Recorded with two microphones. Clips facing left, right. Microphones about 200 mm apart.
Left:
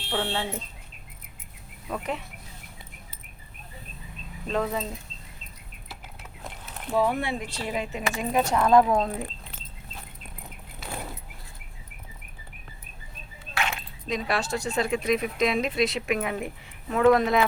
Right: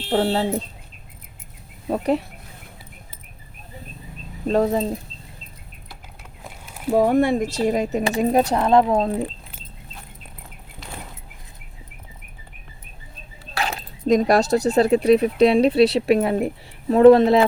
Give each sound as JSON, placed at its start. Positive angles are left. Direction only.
{"t": 0.1, "sound": "speech", "side_deg": -35}
{"t": 1.9, "sound": "speech", "side_deg": -35}
{"t": 4.4, "sound": "speech", "side_deg": -35}
{"t": 6.4, "sound": "a sound", "side_deg": -5}
{"t": 6.9, "sound": "speech", "side_deg": -45}
{"t": 13.4, "sound": "speech", "side_deg": -35}